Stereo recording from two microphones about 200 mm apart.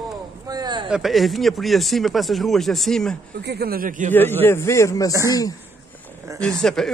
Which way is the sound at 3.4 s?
55° right (ahead or behind).